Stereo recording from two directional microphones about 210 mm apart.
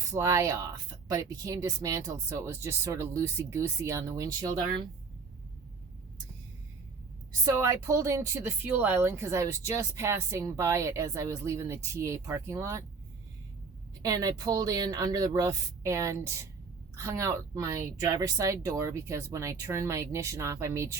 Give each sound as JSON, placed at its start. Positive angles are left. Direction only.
{"t": 0.1, "sound": "speech", "side_deg": -15}
{"t": 7.4, "sound": "speech", "side_deg": -15}
{"t": 14.0, "sound": "speech", "side_deg": -15}